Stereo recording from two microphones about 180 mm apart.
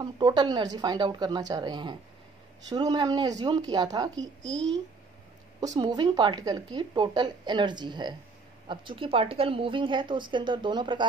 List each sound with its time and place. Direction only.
0.0 s a woman's voice: 25° right (ahead or behind)
5.6 s a woman's voice: 20° right (ahead or behind)